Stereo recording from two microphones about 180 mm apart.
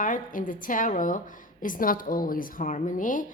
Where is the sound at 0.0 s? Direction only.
45° left (ahead or behind).